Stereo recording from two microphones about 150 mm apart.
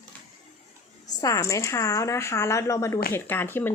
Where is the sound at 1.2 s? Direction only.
20° left (ahead or behind).